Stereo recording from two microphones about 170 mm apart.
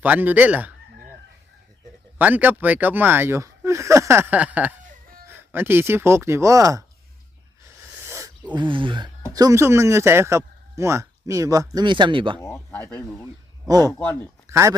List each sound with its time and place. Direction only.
0.0 s speech: 10° right (ahead or behind)
2.1 s speech: 10° right (ahead or behind)
7.9 s a sound: 15° right (ahead or behind)
8.5 s speech: 30° right (ahead or behind)
12.4 s speech: 15° left (ahead or behind)
13.7 s speech: 20° right (ahead or behind)